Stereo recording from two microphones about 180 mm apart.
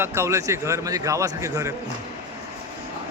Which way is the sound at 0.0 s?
15° right (ahead or behind).